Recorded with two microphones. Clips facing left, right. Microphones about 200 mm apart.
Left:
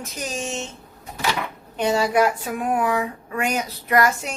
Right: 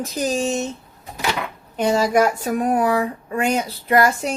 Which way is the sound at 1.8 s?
40° right (ahead or behind).